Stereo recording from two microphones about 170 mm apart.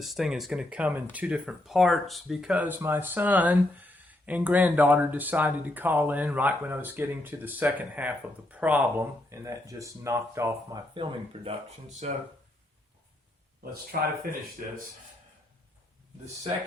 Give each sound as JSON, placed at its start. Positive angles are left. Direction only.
{"t": 0.0, "sound": "speech", "side_deg": 0}
{"t": 13.9, "sound": "speech", "side_deg": -60}